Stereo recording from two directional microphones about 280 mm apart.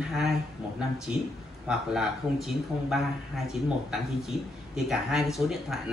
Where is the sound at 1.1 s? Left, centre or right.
Centre.